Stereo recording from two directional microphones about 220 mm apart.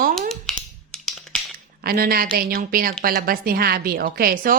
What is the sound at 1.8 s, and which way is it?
A woman's voice, 45° right (ahead or behind).